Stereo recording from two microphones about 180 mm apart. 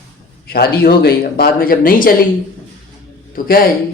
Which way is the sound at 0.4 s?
60° left (ahead or behind).